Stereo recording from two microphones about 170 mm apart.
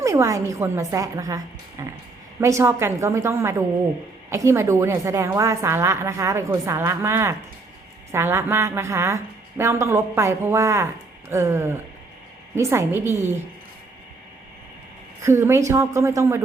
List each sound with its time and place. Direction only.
0.0 s a woman's voice: 20° right (ahead or behind)
1.8 s a sound: 20° right (ahead or behind)
2.4 s a woman's voice: 15° right (ahead or behind)
15.2 s a woman's voice: 15° right (ahead or behind)